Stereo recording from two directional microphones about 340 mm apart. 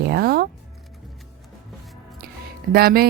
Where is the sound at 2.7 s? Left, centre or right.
Right.